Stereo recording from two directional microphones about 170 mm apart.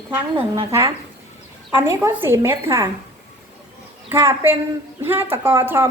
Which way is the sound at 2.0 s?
15° right (ahead or behind).